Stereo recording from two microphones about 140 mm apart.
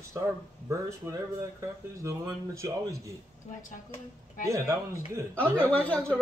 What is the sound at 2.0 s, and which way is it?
Speech, 20° right (ahead or behind).